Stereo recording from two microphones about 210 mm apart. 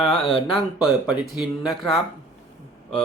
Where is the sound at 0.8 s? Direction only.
Centre (ahead or behind).